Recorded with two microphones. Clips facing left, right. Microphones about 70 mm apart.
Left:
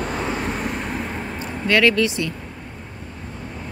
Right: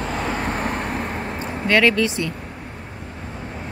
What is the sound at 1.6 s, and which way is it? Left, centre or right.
Speech, right.